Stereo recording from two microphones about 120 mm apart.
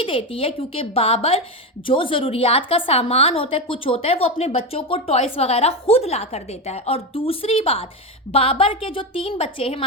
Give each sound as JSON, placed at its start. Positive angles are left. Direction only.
{"t": 0.0, "sound": "a woman's voice", "side_deg": 50}